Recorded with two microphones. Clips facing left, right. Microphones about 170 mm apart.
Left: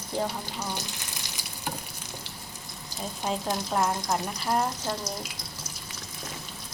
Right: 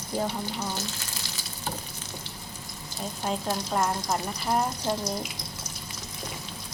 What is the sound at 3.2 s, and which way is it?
Speech, centre (ahead or behind).